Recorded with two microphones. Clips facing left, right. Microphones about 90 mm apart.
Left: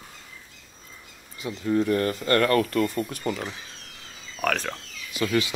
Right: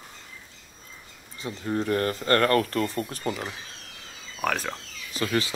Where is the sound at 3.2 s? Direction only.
20° right (ahead or behind).